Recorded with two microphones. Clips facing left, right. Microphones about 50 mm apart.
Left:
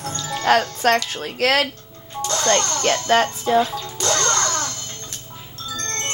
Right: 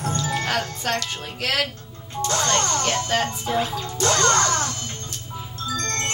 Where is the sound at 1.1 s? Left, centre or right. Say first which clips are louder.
Left 6 dB; left.